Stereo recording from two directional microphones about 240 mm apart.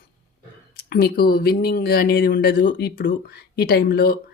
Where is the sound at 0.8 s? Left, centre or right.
Left.